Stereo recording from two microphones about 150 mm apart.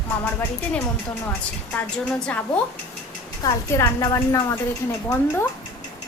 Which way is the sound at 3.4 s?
25° left (ahead or behind).